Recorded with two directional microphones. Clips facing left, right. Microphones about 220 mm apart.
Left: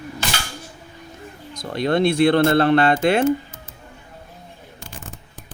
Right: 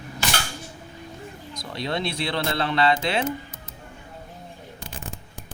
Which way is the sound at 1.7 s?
50° left (ahead or behind).